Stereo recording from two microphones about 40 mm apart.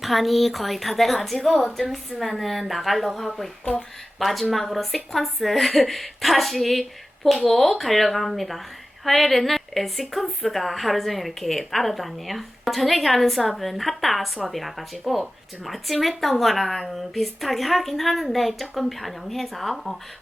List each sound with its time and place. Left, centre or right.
0.0 s a woman's voice: centre
3.6 s speech: left
4.2 s a woman's voice: centre